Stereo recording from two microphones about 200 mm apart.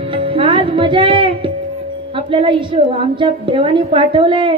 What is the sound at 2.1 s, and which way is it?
A woman's voice, 25° right (ahead or behind).